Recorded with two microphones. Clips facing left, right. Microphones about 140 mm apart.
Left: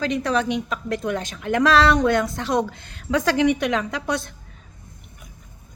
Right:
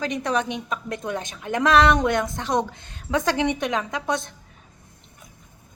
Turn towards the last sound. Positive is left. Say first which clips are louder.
# left 1 dB
turn(degrees=-20)  # may be behind; listen again after turning